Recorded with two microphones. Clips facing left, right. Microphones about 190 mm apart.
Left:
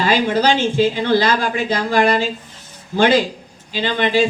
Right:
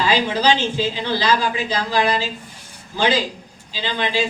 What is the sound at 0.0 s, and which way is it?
Speech, 55° left (ahead or behind).